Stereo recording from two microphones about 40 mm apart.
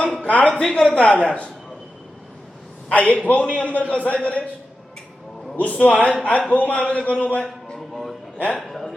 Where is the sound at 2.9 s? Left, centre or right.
Left.